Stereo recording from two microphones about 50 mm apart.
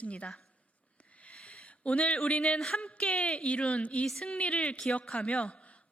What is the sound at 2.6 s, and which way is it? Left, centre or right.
A woman's voice, centre.